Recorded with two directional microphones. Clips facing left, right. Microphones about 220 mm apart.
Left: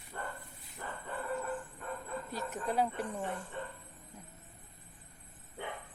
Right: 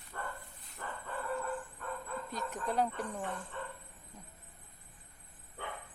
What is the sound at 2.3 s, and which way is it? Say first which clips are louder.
Speech: left 1 dB; 5° left (ahead or behind).